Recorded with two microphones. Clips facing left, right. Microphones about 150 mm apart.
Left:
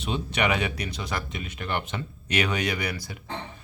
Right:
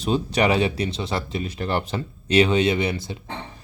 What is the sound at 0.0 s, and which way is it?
Speech, 35° right (ahead or behind).